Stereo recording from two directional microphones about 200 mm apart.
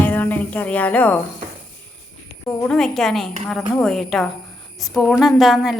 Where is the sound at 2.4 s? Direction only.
5° left (ahead or behind).